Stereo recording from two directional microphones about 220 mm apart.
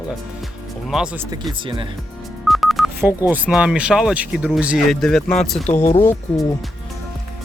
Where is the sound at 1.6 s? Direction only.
25° right (ahead or behind).